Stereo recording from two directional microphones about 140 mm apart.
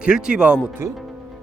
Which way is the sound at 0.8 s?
20° right (ahead or behind).